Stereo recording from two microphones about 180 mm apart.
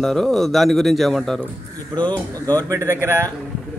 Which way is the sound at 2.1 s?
20° right (ahead or behind).